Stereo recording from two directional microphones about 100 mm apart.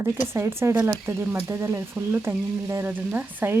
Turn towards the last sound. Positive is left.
turn(degrees=-20)  # may be behind; listen again after turning